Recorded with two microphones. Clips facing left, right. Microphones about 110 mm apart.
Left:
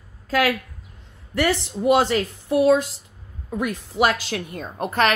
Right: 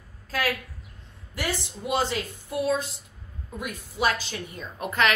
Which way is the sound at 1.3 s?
75° left (ahead or behind).